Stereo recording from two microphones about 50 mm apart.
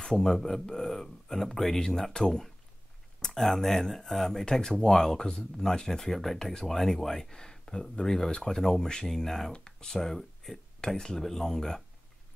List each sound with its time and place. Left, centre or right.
0.0 s speech: centre
10.8 s speech: centre